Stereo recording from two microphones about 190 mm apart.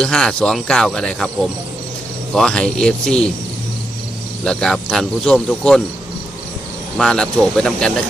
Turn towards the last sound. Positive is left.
turn(degrees=5)  # may be behind; listen again after turning